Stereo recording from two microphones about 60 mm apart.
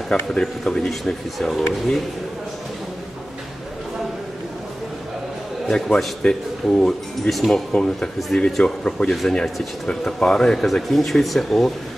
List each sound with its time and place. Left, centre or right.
0.1 s speech: centre
5.7 s speech: centre
7.2 s speech: centre
7.5 s speech: centre